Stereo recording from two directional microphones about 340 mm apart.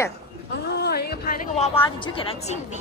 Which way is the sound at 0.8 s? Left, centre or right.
Left.